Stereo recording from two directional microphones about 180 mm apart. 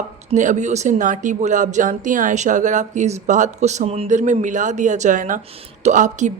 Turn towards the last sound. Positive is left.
turn(degrees=-40)  # may be behind; listen again after turning